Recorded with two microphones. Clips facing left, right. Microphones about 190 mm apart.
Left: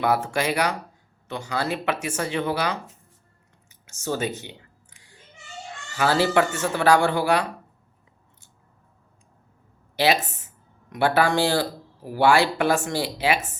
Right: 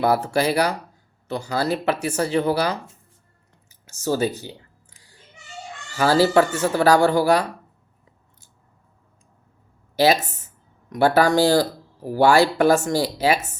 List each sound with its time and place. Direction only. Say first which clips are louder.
0.0 s speech: right 3 dB; 40° right (ahead or behind)
3.7 s a sound: right 5 dB; 35° right (ahead or behind)
5.9 s speech: right 4 dB; 40° right (ahead or behind)
9.9 s speech: right 4 dB; 40° right (ahead or behind)